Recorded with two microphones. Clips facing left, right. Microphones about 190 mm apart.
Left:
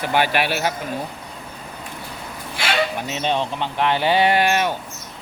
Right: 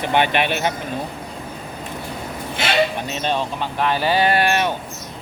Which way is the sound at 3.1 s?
15° left (ahead or behind).